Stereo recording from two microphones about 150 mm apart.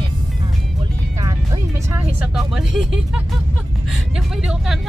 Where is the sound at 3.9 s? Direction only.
5° right (ahead or behind).